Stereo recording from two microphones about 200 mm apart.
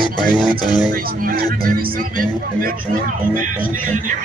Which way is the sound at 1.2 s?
45° right (ahead or behind).